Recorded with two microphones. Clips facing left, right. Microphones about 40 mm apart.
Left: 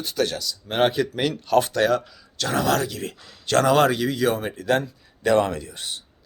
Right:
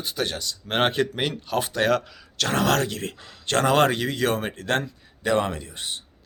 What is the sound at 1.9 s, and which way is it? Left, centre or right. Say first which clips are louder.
Speech: even; right.